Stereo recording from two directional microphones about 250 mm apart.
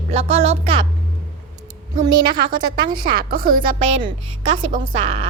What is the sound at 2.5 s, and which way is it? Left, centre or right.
Speech, centre.